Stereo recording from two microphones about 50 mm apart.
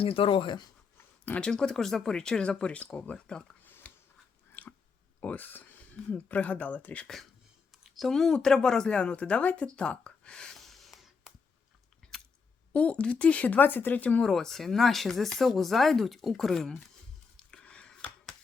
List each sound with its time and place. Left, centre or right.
1.4 s speech: centre
3.9 s a sound: left
4.6 s chewing: left
5.2 s speech: left
7.9 s speech: centre
10.5 s a sound: centre
12.7 s speech: left
13.6 s speech: left
14.2 s speech: centre
17.3 s a sound: centre